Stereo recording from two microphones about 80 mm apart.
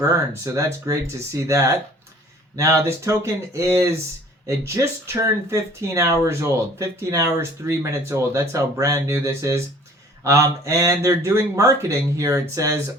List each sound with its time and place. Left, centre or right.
0.0 s speech: right